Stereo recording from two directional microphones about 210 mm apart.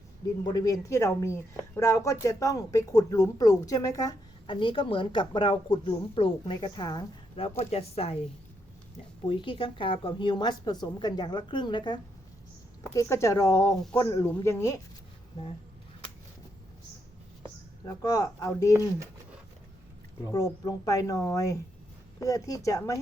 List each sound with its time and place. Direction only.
0.4 s a woman's voice: 20° left (ahead or behind)
9.2 s a woman's voice: 25° left (ahead or behind)
17.8 s speech: 15° left (ahead or behind)
20.2 s speech: 15° left (ahead or behind)